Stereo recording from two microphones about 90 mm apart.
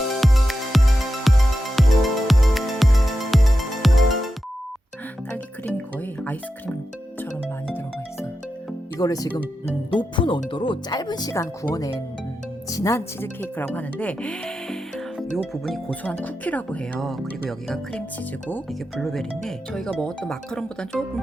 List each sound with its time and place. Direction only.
0.1 s music: centre (ahead or behind)
5.3 s music: 20° left (ahead or behind)
9.0 s speech: 45° left (ahead or behind)
10.0 s speech: 60° left (ahead or behind); by 13.0 s 35° left (ahead or behind)
13.1 s speech: 25° left (ahead or behind)
18.9 s speech: 5° left (ahead or behind)